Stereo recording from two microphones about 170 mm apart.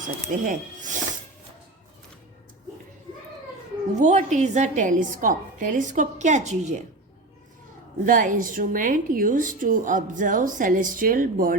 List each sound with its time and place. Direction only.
0.3 s speech: 50° right (ahead or behind)
3.9 s speech: 45° right (ahead or behind)
8.0 s speech: 50° right (ahead or behind)